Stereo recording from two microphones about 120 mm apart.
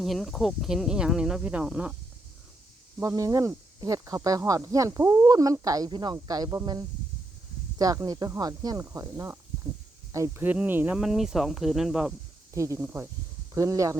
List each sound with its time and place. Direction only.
0.0 s speech: centre (ahead or behind)
3.0 s speech: 25° right (ahead or behind)
7.8 s speech: 30° right (ahead or behind)
10.4 s speech: 15° right (ahead or behind)
12.5 s speech: 25° right (ahead or behind)